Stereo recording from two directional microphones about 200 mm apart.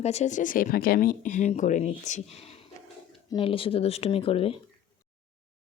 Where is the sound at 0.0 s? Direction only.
35° left (ahead or behind).